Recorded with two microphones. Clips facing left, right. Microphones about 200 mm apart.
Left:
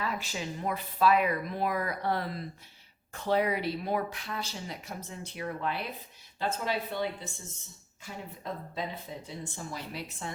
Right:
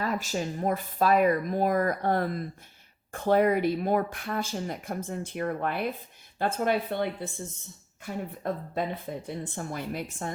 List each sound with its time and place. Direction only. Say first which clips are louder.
0.0 s speech: right 5 dB; 45° right (ahead or behind)